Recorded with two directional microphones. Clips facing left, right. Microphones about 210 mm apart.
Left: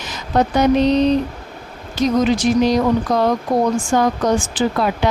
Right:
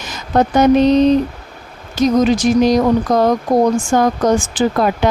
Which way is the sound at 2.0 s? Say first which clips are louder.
Right 3 dB; 40° right (ahead or behind).